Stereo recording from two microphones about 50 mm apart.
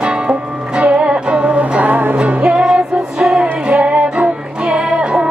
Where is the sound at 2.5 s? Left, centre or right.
Centre.